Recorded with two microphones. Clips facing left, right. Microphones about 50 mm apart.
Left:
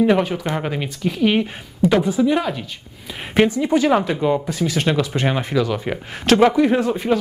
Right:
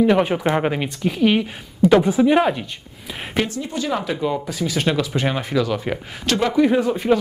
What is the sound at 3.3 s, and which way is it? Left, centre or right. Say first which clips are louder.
Speech: left 8 dB; left.